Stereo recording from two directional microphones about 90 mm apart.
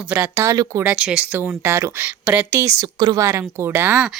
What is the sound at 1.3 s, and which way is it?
Speech, 25° right (ahead or behind).